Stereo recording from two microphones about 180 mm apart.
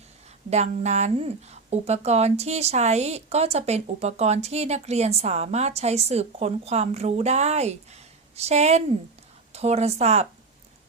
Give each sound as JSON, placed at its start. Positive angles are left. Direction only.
{"t": 0.5, "sound": "speech", "side_deg": -40}